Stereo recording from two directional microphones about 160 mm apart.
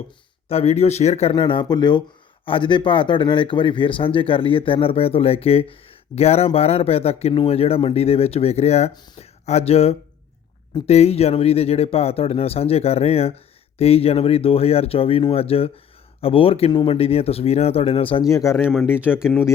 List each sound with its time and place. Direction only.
0.4 s speech: 40° left (ahead or behind)
18.3 s speech: 20° left (ahead or behind)
18.7 s speech: 5° right (ahead or behind)
19.3 s speech: 15° left (ahead or behind)